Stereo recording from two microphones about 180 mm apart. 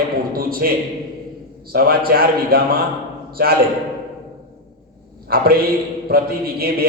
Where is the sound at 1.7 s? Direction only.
55° right (ahead or behind).